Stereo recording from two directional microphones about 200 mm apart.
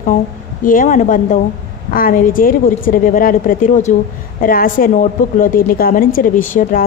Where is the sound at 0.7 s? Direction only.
40° left (ahead or behind).